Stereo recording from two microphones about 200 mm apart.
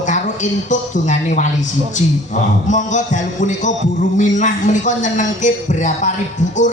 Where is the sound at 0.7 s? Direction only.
35° left (ahead or behind).